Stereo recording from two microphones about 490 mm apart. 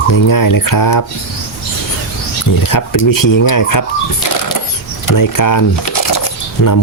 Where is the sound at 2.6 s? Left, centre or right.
Left.